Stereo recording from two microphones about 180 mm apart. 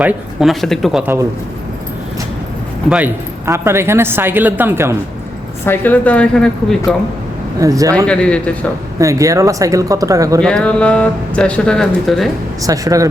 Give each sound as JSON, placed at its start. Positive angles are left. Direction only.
{"t": 0.0, "sound": "speech", "side_deg": -5}
{"t": 2.9, "sound": "a woman's voice", "side_deg": -10}
{"t": 5.6, "sound": "a woman's voice", "side_deg": 10}
{"t": 7.6, "sound": "speech", "side_deg": -20}
{"t": 8.0, "sound": "a woman's voice", "side_deg": 5}
{"t": 9.0, "sound": "a woman's voice", "side_deg": -15}
{"t": 10.4, "sound": "speech", "side_deg": 5}
{"t": 12.6, "sound": "speech", "side_deg": -20}